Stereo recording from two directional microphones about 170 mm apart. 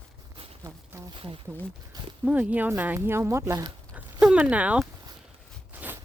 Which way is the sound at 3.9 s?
5° right (ahead or behind).